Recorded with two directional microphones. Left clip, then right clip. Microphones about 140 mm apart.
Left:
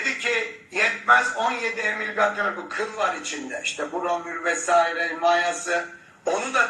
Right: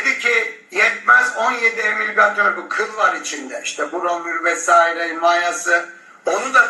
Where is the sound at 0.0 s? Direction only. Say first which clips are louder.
Right 7 dB; 30° right (ahead or behind).